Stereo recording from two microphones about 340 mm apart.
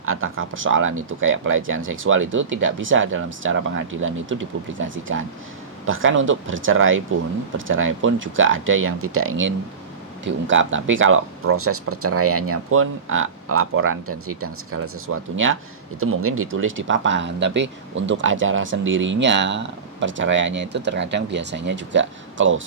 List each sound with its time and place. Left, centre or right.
0.0 s speech: right